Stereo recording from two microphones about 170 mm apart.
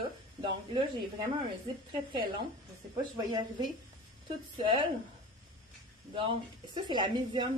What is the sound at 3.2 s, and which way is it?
Speech, 25° right (ahead or behind).